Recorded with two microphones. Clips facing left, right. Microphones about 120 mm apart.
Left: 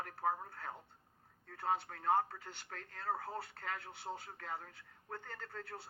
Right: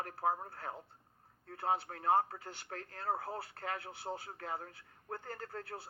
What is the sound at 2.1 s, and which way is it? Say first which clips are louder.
A man's voice: right 3 dB; 35° right (ahead or behind).